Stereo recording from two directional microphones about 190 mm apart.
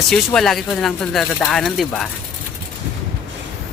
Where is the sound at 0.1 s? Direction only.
Centre (ahead or behind).